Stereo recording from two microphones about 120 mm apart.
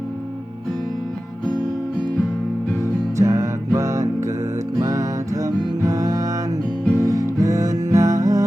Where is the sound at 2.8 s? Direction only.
25° right (ahead or behind).